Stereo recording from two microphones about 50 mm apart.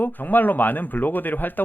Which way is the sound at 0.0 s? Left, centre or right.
Left.